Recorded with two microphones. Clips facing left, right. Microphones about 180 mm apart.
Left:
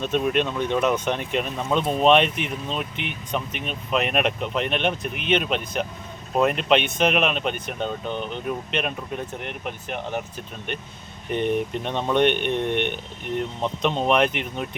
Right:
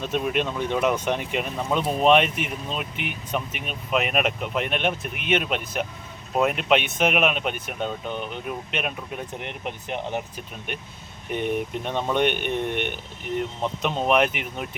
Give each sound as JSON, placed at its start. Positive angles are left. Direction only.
{"t": 0.0, "sound": "speech", "side_deg": -10}
{"t": 9.4, "sound": "speech", "side_deg": -20}